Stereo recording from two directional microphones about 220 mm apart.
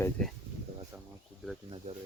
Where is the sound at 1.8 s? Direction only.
30° right (ahead or behind).